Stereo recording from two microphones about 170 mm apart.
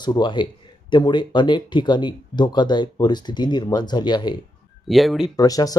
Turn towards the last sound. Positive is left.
turn(degrees=20)  # may be behind; listen again after turning